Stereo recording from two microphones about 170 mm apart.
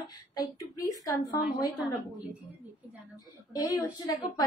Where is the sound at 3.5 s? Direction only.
20° left (ahead or behind).